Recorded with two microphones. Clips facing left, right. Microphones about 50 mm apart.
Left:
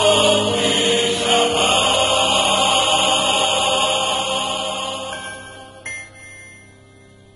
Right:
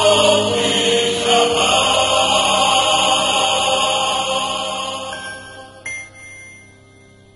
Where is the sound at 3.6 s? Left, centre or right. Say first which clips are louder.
Right 1 dB; right.